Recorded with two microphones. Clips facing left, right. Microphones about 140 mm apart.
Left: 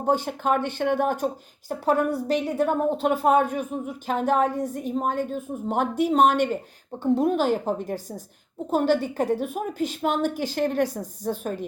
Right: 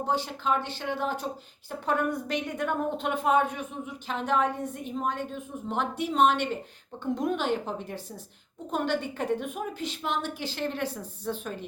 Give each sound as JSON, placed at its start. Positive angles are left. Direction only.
{"t": 0.0, "sound": "a woman's voice", "side_deg": 50}
{"t": 1.8, "sound": "a woman's voice", "side_deg": 35}